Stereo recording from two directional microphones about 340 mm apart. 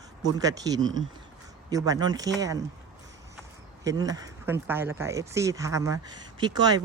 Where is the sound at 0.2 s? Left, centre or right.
Centre.